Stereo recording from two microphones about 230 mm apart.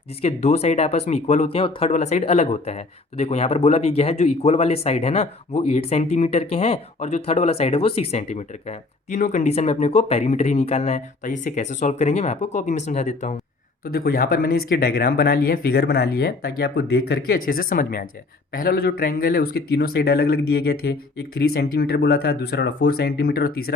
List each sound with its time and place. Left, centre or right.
0.2 s speech: left
13.8 s speech: left